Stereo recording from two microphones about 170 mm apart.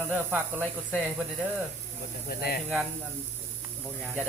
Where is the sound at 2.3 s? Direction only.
65° left (ahead or behind).